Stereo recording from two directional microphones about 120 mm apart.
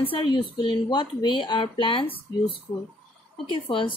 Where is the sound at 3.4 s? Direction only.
45° left (ahead or behind).